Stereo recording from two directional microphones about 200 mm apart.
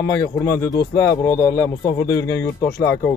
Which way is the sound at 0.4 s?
15° left (ahead or behind).